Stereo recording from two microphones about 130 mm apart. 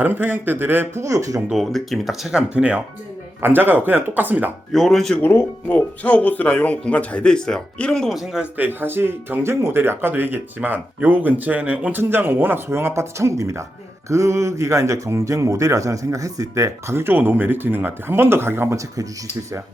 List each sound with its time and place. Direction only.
0.0 s speech: 15° right (ahead or behind)
1.5 s speech: centre (ahead or behind)
4.7 s speech: centre (ahead or behind)
5.2 s speech: 15° left (ahead or behind); by 19.0 s 20° right (ahead or behind)